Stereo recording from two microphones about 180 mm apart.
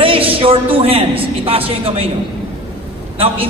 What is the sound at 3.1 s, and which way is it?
Speech, 30° right (ahead or behind).